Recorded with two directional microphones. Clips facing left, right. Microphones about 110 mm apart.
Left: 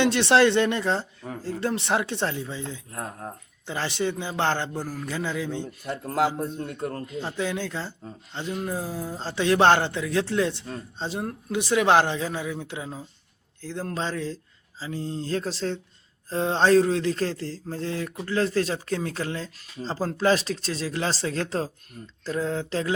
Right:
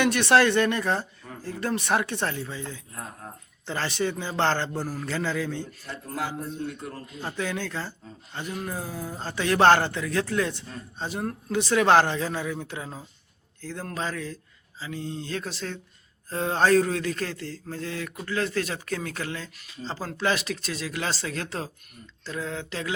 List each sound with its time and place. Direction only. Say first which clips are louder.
0.0 s a man's voice: left 1 dB; 25° left (ahead or behind)
2.9 s a man's voice: left 5 dB; 45° left (ahead or behind)
3.7 s a man's voice: even; 20° left (ahead or behind)
4.7 s a man's voice: right 1 dB; 15° right (ahead or behind)
5.0 s a man's voice: right 1 dB; 15° left (ahead or behind)
5.9 s a man's voice: left 8 dB; 60° left (ahead or behind)
7.2 s a man's voice: left 1 dB; 20° left (ahead or behind)
14.8 s a sound: left 3 dB; 35° left (ahead or behind)